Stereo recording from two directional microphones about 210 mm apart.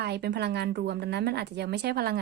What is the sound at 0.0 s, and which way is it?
A woman's voice, 50° right (ahead or behind).